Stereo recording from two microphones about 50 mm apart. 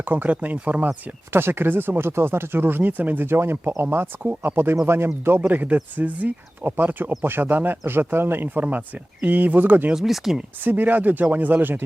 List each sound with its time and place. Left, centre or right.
0.0 s speech: right
1.3 s speech: right
3.2 s speech: right
5.5 s speech: right
8.6 s speech: right
9.9 s speech: centre
10.6 s speech: right